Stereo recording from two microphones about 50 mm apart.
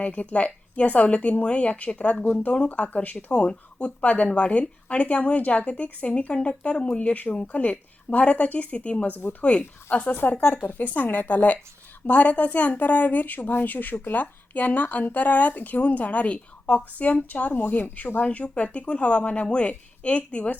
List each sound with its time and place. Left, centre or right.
0.0 s speech: left
10.2 s speech: left